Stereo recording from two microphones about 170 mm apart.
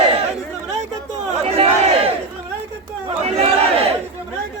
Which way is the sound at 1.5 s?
35° right (ahead or behind).